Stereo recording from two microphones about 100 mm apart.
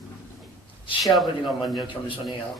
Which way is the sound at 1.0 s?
Centre (ahead or behind).